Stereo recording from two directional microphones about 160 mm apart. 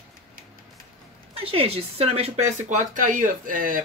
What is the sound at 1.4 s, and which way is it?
Speech, 35° right (ahead or behind).